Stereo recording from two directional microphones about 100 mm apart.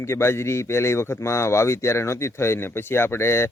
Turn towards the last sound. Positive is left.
turn(degrees=25)  # may be behind; listen again after turning